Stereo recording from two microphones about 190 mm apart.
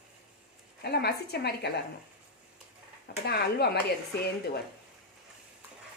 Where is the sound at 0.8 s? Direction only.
60° left (ahead or behind).